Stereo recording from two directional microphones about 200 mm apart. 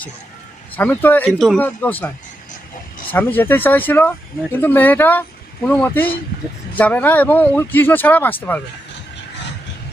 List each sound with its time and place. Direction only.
0.8 s speech: 10° left (ahead or behind)
3.1 s speech: 10° left (ahead or behind)